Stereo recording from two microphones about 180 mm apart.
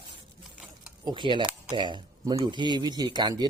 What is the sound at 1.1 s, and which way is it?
Speech, 25° right (ahead or behind).